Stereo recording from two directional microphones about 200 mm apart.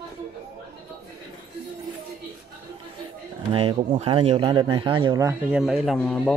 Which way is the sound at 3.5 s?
25° right (ahead or behind).